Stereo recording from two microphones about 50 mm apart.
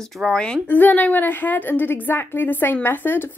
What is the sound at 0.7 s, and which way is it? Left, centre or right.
A woman's voice, left.